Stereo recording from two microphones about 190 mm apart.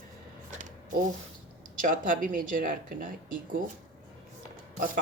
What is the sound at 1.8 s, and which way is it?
Speech, 45° right (ahead or behind).